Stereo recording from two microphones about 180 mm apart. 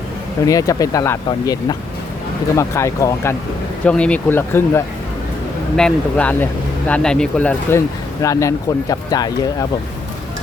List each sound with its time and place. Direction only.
0.4 s speech: 20° left (ahead or behind)
8.2 s speech: 15° left (ahead or behind)